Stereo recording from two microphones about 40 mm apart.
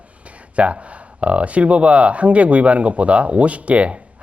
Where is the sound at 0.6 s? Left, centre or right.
Right.